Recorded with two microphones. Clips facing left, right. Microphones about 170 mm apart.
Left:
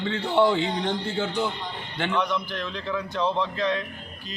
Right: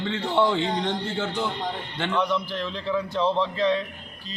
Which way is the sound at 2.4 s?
30° right (ahead or behind).